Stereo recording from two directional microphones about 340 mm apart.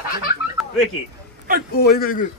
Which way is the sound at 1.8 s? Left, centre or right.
Left.